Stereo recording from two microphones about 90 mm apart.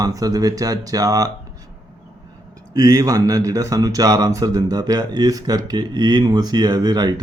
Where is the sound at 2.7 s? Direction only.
40° right (ahead or behind).